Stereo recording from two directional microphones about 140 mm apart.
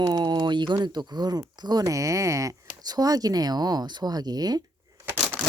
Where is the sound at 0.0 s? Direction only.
30° right (ahead or behind).